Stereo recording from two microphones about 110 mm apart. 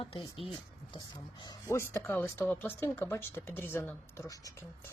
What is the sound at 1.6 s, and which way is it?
Speech, 25° left (ahead or behind).